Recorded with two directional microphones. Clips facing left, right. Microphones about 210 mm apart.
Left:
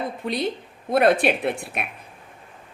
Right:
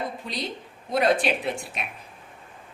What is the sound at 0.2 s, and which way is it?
A woman's voice, 60° left (ahead or behind).